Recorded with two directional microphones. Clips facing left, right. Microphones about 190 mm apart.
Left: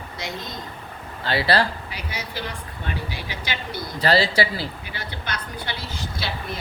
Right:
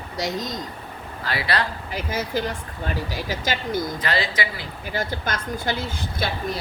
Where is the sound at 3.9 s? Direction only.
35° left (ahead or behind).